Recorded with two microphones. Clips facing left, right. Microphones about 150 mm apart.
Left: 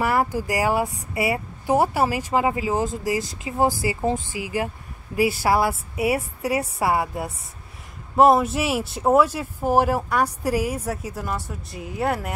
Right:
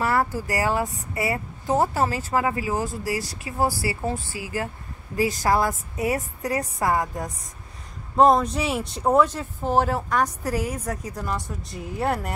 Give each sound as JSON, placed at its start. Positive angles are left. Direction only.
{"t": 0.0, "sound": "speech", "side_deg": 15}